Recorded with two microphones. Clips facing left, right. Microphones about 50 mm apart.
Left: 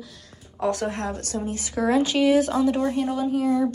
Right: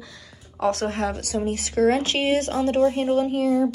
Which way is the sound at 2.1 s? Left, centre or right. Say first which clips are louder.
Left 3 dB; right.